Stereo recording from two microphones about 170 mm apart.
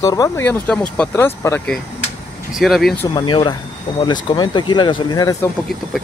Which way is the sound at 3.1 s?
30° left (ahead or behind).